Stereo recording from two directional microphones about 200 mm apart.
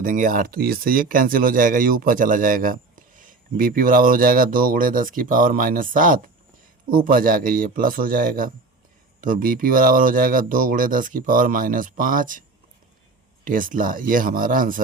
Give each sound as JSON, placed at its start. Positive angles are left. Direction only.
{"t": 0.0, "sound": "speech", "side_deg": -40}
{"t": 13.4, "sound": "speech", "side_deg": -45}